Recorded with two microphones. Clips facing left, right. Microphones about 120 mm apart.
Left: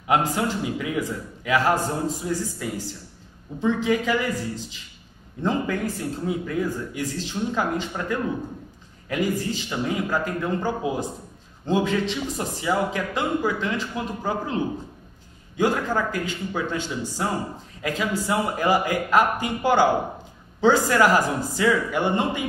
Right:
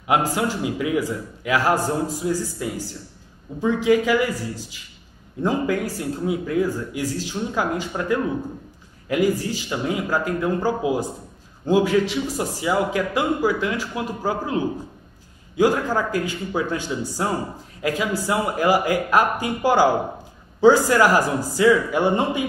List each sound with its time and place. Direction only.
0.1 s a man's voice: 15° right (ahead or behind)
21.1 s speech: 20° left (ahead or behind)
21.5 s a man's voice: 15° right (ahead or behind)